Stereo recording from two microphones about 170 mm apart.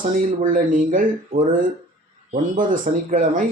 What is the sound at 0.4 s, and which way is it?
Speech, 50° right (ahead or behind).